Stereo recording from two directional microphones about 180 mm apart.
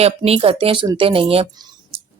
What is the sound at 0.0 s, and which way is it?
Speech, 35° right (ahead or behind).